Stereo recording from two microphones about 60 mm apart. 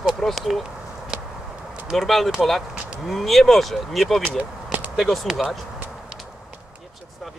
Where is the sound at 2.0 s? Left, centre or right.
Centre.